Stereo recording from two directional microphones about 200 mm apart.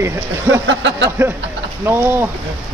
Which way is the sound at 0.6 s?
65° right (ahead or behind).